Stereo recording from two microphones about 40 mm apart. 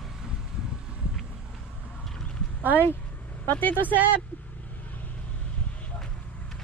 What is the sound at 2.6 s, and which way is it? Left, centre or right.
Speech, right.